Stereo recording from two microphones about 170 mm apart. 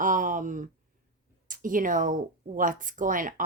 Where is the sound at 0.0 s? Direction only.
50° right (ahead or behind).